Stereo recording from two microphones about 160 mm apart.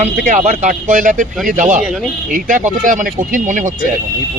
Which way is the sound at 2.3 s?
55° right (ahead or behind).